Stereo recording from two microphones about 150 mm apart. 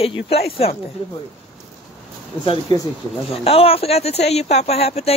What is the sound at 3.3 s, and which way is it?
Speech, 40° left (ahead or behind).